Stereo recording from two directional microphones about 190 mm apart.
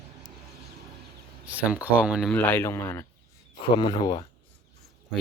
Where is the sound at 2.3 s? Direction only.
10° left (ahead or behind).